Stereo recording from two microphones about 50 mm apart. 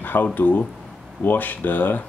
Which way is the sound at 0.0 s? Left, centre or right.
Left.